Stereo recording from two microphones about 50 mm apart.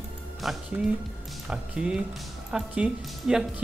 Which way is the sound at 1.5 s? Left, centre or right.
Centre.